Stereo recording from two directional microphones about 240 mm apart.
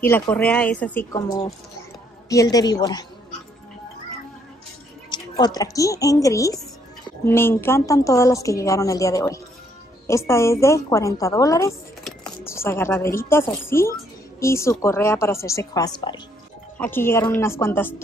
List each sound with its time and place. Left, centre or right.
0.0 s a woman's voice: centre
5.1 s a woman's voice: centre